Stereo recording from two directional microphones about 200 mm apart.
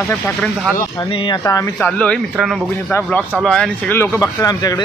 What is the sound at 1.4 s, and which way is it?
Speech, 15° left (ahead or behind).